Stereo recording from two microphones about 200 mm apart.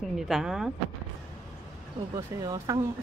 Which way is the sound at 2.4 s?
15° right (ahead or behind).